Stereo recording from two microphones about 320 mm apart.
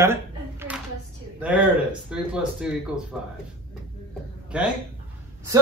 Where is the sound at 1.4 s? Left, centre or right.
Centre.